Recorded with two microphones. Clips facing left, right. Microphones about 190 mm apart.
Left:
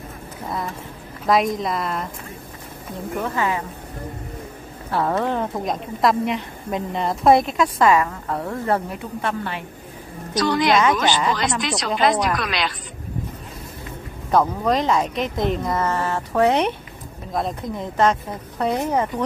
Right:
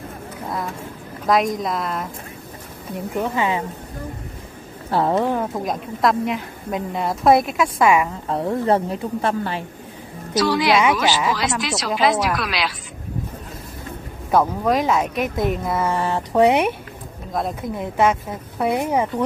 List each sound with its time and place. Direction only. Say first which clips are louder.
1.2 s a woman's voice: even; centre (ahead or behind)
3.3 s speech: right 1 dB; 20° right (ahead or behind)
5.1 s a woman's voice: right 2 dB; 10° right (ahead or behind)
8.3 s speech: right 7 dB; 25° right (ahead or behind)
9.2 s a woman's voice: right 1 dB; 35° right (ahead or behind)
10.3 s a woman's voice: right 1 dB; 5° right (ahead or behind)
14.3 s a woman's voice: right 1 dB; 5° right (ahead or behind)
17.7 s a woman's voice: right 1 dB; 10° right (ahead or behind)